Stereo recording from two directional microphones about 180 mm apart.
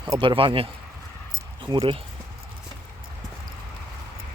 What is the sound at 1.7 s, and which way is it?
Speech, 30° right (ahead or behind).